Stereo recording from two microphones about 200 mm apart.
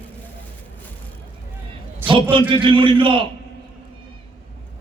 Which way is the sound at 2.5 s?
25° right (ahead or behind).